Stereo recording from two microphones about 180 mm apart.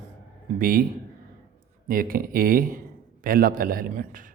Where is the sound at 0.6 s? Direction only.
55° right (ahead or behind).